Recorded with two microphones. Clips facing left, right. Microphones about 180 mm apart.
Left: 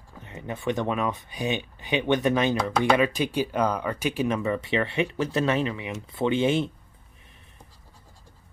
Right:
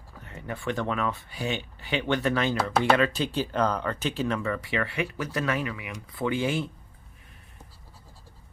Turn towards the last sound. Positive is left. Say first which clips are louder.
# left 4 dB
turn(degrees=20)  # may be behind; listen again after turning